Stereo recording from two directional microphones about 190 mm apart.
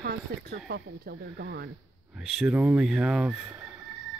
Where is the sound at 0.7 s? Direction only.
65° right (ahead or behind).